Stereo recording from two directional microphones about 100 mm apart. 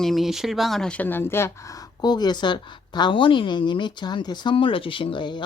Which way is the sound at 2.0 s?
45° left (ahead or behind).